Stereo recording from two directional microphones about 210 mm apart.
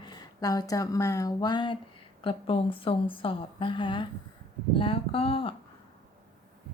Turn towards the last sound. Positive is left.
turn(degrees=25)  # may be behind; listen again after turning